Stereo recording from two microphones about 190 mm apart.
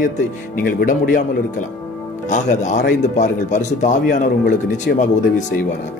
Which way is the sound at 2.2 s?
40° left (ahead or behind).